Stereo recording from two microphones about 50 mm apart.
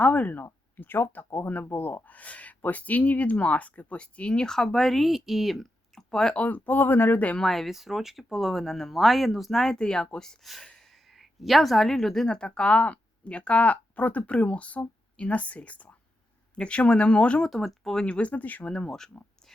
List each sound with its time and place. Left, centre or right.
0.0 s speech: left
0.8 s a woman's voice: left; by 5.6 s centre
5.9 s speech: centre
6.3 s speech: left
7.3 s speech: centre
7.7 s speech: centre
10.4 s a woman's voice: centre; by 17.4 s left
17.4 s speech: centre
17.9 s a woman's voice: left
18.7 s speech: centre